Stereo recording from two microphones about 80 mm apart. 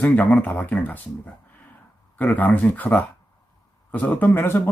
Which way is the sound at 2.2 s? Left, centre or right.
Left.